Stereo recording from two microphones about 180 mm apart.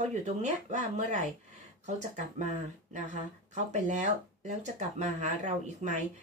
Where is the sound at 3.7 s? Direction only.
40° right (ahead or behind).